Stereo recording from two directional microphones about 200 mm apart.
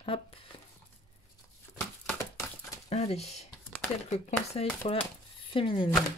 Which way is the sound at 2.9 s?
35° left (ahead or behind).